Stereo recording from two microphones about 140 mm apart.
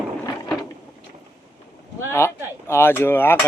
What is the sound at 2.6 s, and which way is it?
Speech, 15° left (ahead or behind).